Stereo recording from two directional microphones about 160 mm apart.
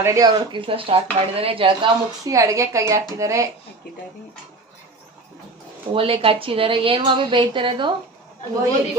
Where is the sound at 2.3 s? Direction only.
20° right (ahead or behind).